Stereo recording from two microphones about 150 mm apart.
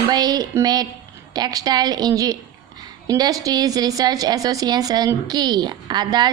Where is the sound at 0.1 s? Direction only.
25° right (ahead or behind).